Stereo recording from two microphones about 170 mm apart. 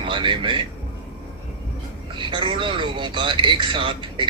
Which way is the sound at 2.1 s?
30° right (ahead or behind).